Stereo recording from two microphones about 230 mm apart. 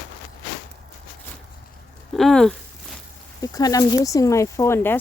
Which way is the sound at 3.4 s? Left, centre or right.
Centre.